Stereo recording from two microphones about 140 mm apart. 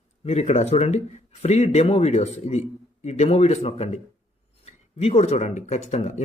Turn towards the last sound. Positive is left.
turn(degrees=55)  # may be behind; listen again after turning